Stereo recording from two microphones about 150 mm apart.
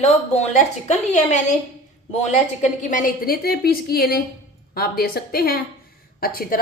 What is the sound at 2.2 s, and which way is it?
A woman's voice, 50° left (ahead or behind).